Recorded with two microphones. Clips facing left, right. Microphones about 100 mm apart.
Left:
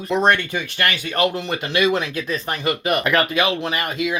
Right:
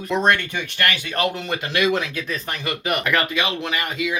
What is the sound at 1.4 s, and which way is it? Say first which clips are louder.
Speech: left 2 dB; 25° left (ahead or behind).